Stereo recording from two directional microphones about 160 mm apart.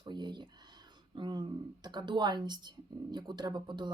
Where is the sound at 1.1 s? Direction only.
30° right (ahead or behind).